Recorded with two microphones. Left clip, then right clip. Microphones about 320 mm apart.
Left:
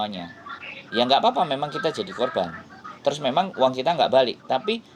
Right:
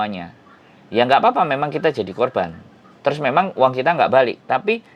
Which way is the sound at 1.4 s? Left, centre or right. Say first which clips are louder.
Right 5 dB; right.